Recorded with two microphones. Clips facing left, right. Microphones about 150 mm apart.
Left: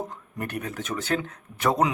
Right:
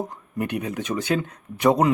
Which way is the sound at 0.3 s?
15° right (ahead or behind).